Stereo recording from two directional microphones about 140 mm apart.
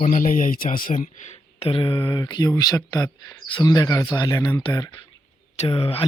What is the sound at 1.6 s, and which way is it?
Speech, 40° left (ahead or behind).